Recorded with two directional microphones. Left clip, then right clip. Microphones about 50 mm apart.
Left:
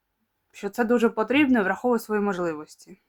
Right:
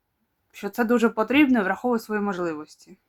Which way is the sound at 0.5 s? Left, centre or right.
Centre.